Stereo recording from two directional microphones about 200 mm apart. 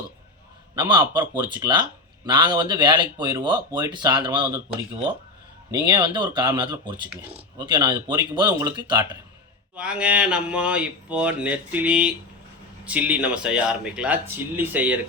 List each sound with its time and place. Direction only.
0.8 s a man's voice: 20° right (ahead or behind)
5.7 s a man's voice: 20° right (ahead or behind)
9.7 s a sound: 5° right (ahead or behind)
12.8 s speech: 5° right (ahead or behind)